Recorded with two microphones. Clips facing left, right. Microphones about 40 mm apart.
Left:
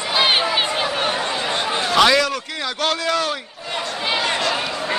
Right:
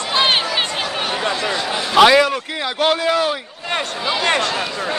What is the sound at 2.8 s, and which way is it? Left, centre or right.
Speech, centre.